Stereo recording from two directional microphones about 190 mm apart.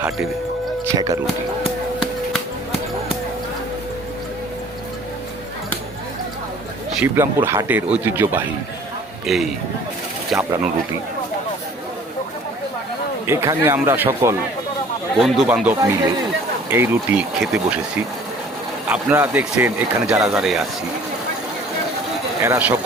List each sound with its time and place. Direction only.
0.9 s speech: 20° right (ahead or behind)
7.0 s speech: 10° right (ahead or behind)
9.2 s speech: centre (ahead or behind)
13.2 s speech: 15° right (ahead or behind)
18.9 s speech: 10° right (ahead or behind)
20.3 s speech: centre (ahead or behind)
22.4 s speech: 15° right (ahead or behind)